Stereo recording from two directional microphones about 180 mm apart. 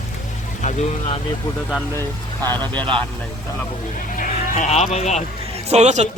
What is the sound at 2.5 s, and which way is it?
Speech, 10° left (ahead or behind).